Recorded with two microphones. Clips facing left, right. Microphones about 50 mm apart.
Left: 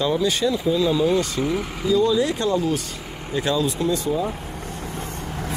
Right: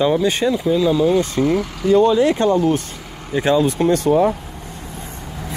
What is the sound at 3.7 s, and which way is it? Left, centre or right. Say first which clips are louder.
Speech: right 7 dB; right.